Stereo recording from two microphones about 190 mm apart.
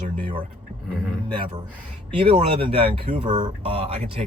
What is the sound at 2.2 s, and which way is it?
Speech, 30° right (ahead or behind).